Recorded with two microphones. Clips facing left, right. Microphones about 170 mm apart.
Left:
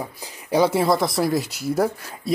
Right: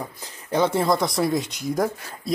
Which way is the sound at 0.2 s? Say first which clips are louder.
Left 3 dB; 10° left (ahead or behind).